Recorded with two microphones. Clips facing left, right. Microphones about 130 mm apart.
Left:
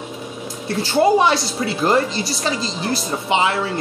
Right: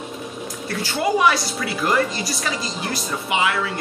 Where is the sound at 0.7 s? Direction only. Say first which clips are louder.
Left 7 dB; 30° left (ahead or behind).